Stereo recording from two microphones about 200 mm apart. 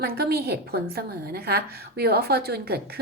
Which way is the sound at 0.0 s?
50° right (ahead or behind).